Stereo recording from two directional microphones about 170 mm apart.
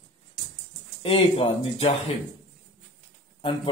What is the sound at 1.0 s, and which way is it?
Speech, 35° left (ahead or behind).